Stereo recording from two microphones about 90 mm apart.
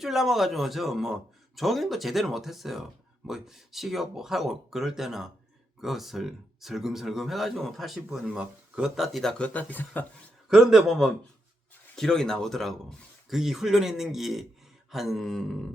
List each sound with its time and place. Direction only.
0.0 s speech: 5° right (ahead or behind)
9.4 s speech: 15° left (ahead or behind)
10.5 s speech: 5° right (ahead or behind)